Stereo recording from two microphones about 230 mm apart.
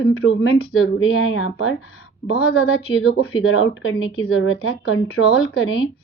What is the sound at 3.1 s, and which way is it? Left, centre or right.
A woman's voice, left.